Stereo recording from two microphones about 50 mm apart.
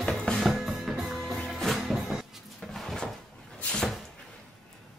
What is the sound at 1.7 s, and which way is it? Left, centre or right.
Music, centre.